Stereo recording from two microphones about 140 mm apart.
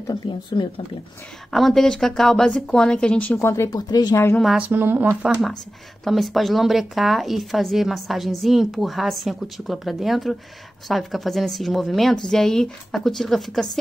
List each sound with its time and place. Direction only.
0.0 s speech: 30° left (ahead or behind)
1.5 s a woman's voice: centre (ahead or behind); by 4.4 s 20° left (ahead or behind)
4.4 s speech: centre (ahead or behind)
4.6 s speech: 15° right (ahead or behind)
6.0 s speech: centre (ahead or behind)